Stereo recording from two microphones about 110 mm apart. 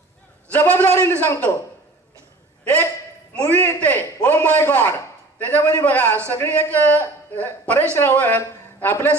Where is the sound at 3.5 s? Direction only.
20° left (ahead or behind).